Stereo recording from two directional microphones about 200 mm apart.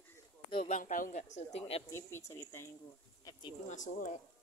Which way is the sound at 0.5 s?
30° left (ahead or behind).